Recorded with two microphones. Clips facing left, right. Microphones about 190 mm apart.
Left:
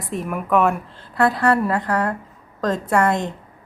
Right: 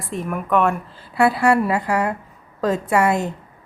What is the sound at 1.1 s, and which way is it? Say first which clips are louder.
A woman's voice: right 1 dB; 10° right (ahead or behind).